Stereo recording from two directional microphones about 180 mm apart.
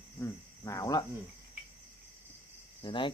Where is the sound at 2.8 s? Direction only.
25° left (ahead or behind).